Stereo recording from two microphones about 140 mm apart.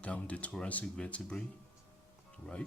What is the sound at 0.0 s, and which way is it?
Speech, 10° left (ahead or behind).